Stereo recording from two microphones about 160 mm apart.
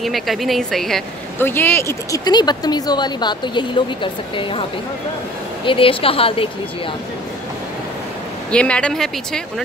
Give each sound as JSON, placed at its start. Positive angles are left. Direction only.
{"t": 0.0, "sound": "a woman's voice", "side_deg": 0}
{"t": 1.4, "sound": "speech", "side_deg": 15}
{"t": 5.7, "sound": "speech", "side_deg": 35}
{"t": 8.5, "sound": "speech", "side_deg": 5}